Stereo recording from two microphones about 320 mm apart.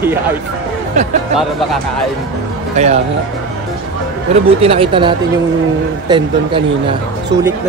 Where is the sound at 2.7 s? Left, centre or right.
Centre.